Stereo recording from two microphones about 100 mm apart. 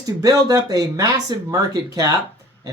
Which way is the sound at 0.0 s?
35° right (ahead or behind).